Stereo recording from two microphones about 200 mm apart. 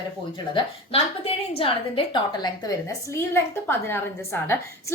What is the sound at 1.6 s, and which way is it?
A woman's voice, 25° left (ahead or behind).